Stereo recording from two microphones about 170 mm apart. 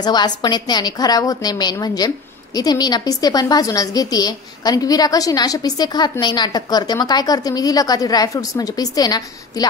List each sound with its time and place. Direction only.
0.0 s a woman's voice: 25° left (ahead or behind)